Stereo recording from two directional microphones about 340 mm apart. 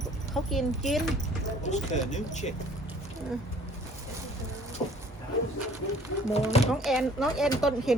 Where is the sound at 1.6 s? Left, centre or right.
Left.